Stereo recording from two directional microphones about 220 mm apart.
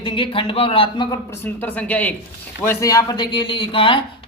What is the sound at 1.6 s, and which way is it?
A woman's voice, 5° left (ahead or behind).